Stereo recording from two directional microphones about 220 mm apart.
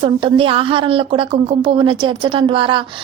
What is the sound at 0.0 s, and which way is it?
A woman's voice, 25° right (ahead or behind).